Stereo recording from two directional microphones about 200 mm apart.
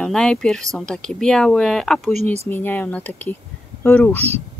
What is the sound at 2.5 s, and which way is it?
Speech, 10° left (ahead or behind).